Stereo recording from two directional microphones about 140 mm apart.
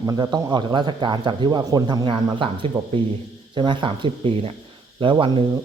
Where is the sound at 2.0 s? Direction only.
40° right (ahead or behind).